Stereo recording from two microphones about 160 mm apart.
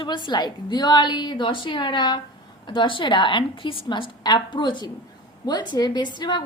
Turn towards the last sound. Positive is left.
turn(degrees=25)  # may be behind; listen again after turning